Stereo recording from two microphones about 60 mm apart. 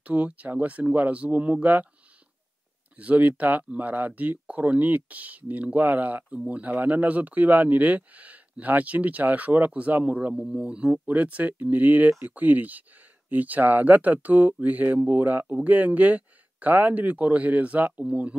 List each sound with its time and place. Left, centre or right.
0.0 s speech: right
3.0 s speech: right
10.3 s speech: centre